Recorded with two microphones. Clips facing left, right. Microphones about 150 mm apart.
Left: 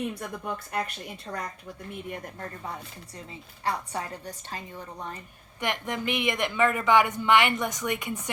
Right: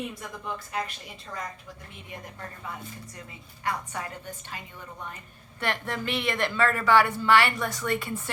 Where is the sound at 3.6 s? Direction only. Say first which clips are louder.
Left 1 dB; 35° left (ahead or behind).